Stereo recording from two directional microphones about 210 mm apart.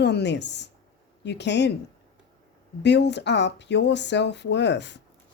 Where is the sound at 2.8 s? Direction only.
55° left (ahead or behind).